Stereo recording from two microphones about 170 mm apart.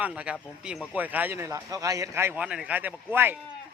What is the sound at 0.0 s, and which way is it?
Speech, 5° right (ahead or behind).